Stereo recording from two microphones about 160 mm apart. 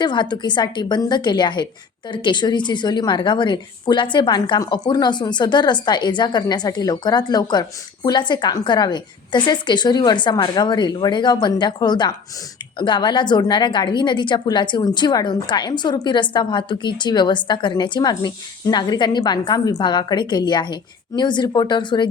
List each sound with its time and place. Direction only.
0.0 s a woman's voice: 30° left (ahead or behind)